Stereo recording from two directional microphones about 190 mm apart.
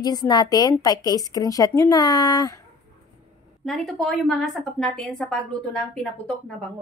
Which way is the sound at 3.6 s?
Centre (ahead or behind).